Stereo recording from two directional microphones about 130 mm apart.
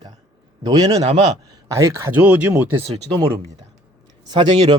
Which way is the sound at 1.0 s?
60° right (ahead or behind).